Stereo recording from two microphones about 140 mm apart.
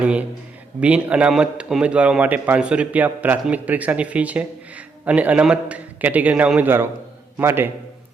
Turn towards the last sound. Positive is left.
turn(degrees=-15)  # may be behind; listen again after turning